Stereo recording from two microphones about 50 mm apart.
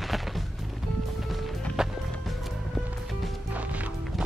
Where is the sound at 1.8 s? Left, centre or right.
Centre.